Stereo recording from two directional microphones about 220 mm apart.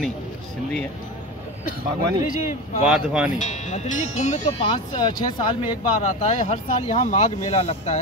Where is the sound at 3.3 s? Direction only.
30° left (ahead or behind).